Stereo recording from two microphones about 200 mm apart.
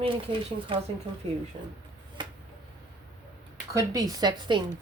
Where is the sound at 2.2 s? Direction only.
25° right (ahead or behind).